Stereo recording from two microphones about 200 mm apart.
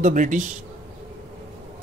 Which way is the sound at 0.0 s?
40° right (ahead or behind).